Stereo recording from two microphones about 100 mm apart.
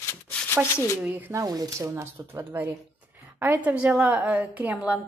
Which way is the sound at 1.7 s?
30° right (ahead or behind).